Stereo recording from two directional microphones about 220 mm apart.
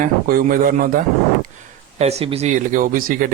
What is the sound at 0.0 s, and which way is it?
Speech, 40° right (ahead or behind).